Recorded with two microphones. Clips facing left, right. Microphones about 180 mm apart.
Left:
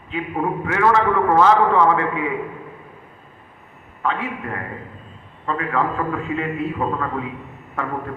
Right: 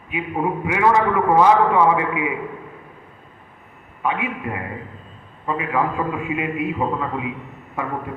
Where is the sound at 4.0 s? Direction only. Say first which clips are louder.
Right 1 dB; 15° right (ahead or behind).